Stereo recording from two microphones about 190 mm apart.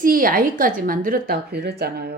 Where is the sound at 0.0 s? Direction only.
50° right (ahead or behind).